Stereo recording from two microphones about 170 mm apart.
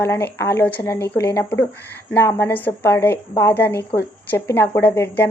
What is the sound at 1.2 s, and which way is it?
Speech, 10° left (ahead or behind).